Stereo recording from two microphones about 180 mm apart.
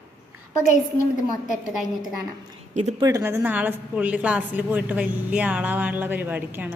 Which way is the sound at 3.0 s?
15° right (ahead or behind).